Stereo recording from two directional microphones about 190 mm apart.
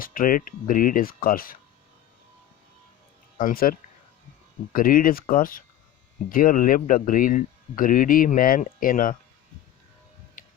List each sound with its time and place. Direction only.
0.0 s speech: 45° left (ahead or behind)
3.3 s speech: 50° left (ahead or behind)
10.4 s music: 45° left (ahead or behind)